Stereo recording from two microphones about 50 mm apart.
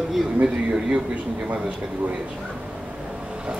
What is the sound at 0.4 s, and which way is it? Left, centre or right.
Speech, centre.